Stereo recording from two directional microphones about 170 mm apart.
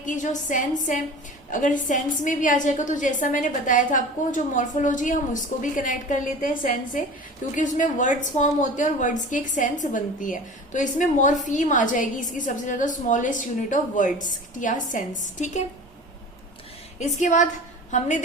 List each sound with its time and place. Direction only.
0.0 s speech: 50° left (ahead or behind)
17.0 s speech: 45° left (ahead or behind)